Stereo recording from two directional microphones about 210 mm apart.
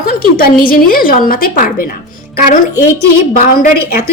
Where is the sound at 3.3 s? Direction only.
40° left (ahead or behind).